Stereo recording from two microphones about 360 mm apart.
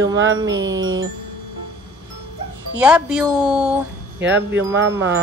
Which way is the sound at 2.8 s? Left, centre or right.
Centre.